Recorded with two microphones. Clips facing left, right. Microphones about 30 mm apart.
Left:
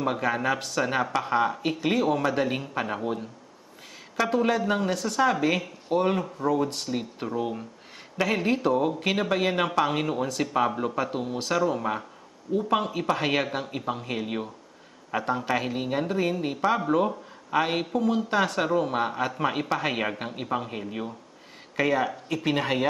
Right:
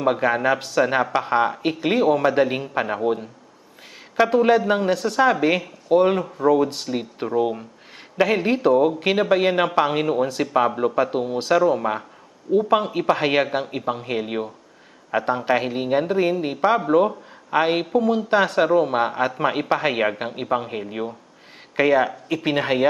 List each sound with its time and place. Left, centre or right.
0.0 s speech: centre
5.6 s speech: centre
21.7 s speech: right